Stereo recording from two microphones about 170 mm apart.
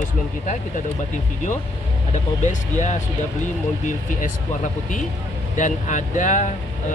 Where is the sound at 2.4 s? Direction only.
45° left (ahead or behind).